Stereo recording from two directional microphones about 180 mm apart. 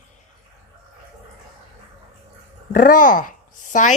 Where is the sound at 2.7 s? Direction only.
50° left (ahead or behind).